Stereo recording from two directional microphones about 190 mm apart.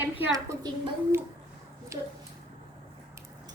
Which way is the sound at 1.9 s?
15° right (ahead or behind).